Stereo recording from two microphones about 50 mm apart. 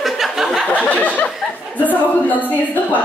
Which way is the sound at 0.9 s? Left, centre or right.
Left.